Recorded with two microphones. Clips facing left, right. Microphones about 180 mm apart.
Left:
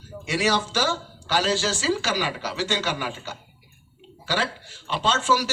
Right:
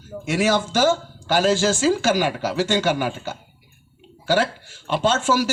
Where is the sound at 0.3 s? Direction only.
50° right (ahead or behind).